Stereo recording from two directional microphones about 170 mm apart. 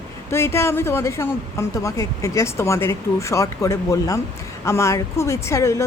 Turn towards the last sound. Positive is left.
turn(degrees=20)  # may be behind; listen again after turning